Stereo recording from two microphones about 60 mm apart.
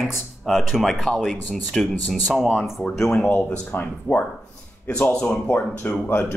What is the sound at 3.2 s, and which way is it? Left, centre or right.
Speech, left.